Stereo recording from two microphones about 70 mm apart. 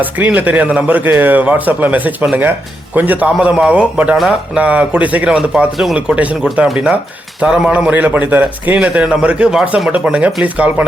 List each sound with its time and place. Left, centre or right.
0.0 s a man's voice: right